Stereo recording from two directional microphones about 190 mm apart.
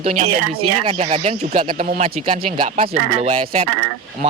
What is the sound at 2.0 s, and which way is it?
Speech, 40° right (ahead or behind).